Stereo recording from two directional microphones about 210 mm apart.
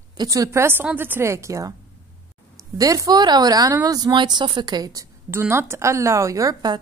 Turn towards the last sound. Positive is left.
turn(degrees=-15)  # may be behind; listen again after turning